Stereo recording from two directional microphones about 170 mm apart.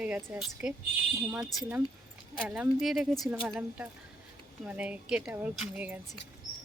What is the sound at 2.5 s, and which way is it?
A woman's voice, 5° right (ahead or behind).